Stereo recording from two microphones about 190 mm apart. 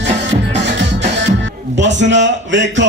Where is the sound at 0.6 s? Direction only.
70° right (ahead or behind).